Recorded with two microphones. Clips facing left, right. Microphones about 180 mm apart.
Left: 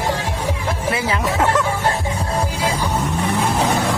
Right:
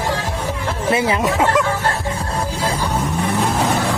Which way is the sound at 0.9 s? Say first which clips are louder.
Right 5 dB; 20° right (ahead or behind).